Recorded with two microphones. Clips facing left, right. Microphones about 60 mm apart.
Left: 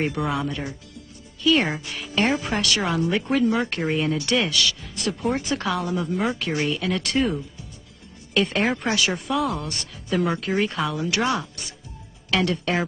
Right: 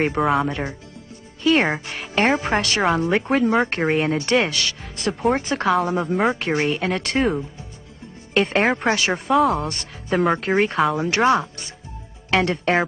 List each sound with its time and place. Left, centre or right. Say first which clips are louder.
0.2 s speech: right 6 dB; centre
0.5 s speech: right 4 dB; right
8.4 s speech: right 3 dB; right
9.3 s speech: right 11 dB; right
9.7 s a woman's voice: right 3 dB; right